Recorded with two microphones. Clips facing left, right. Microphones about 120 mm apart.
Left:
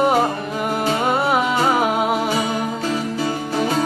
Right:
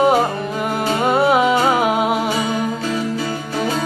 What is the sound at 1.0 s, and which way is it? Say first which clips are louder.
Music: right 6 dB; centre (ahead or behind).